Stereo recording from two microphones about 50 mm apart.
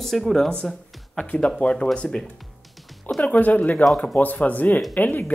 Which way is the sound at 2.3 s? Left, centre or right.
Centre.